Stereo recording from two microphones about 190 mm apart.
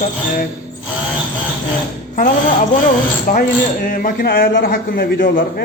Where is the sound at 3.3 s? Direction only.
50° left (ahead or behind).